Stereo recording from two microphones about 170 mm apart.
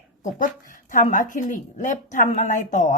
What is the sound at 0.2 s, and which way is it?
Speech, 50° left (ahead or behind).